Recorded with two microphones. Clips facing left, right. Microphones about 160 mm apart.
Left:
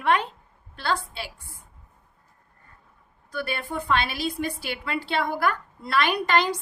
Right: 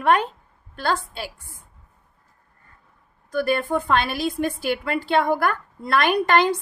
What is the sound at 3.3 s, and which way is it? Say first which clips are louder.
A woman's voice: right 9 dB; 45° right (ahead or behind).